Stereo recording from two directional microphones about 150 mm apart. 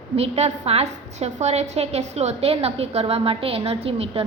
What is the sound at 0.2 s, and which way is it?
A woman's voice, 45° right (ahead or behind).